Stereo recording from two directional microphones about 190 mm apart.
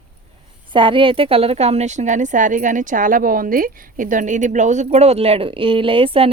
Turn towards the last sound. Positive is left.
turn(degrees=-30)  # may be behind; listen again after turning